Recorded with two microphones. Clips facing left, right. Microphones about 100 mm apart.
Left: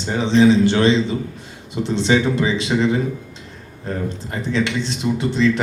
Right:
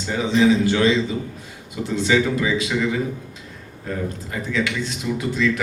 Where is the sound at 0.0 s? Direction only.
25° left (ahead or behind).